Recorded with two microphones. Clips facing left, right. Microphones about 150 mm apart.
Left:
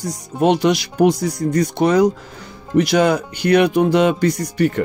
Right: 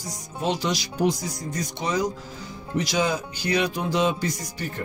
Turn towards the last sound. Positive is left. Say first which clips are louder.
# left 15 dB
turn(degrees=70)  # may be behind; listen again after turning